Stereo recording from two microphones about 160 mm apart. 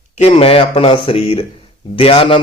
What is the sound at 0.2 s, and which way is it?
A man's voice, 40° left (ahead or behind).